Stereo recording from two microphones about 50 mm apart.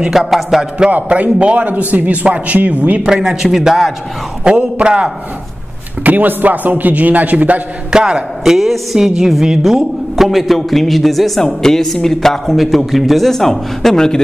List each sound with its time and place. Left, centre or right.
0.1 s a man's voice: centre
0.9 s a man's voice: right
3.1 s a man's voice: centre
4.6 s a man's voice: right
6.0 s a man's voice: right
7.9 s a man's voice: centre
8.5 s a woman's voice: centre